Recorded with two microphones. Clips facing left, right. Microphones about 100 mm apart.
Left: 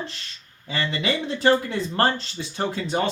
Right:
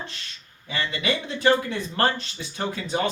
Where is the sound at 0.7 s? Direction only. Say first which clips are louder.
Left 1 dB; 30° left (ahead or behind).